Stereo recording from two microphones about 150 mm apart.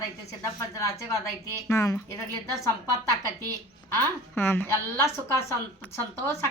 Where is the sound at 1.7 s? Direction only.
20° left (ahead or behind).